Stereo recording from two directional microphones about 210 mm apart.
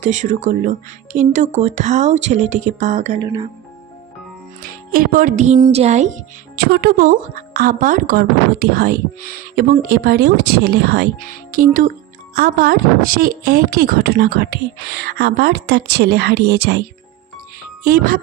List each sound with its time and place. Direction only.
0.0 s speech: 35° right (ahead or behind)
4.6 s speech: 45° right (ahead or behind)
6.5 s a woman's voice: 45° right (ahead or behind)
17.8 s a woman's voice: 45° right (ahead or behind)